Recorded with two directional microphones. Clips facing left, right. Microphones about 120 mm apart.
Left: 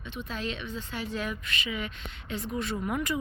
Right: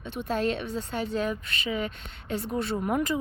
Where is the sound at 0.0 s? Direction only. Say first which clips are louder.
Right 7 dB; 50° right (ahead or behind).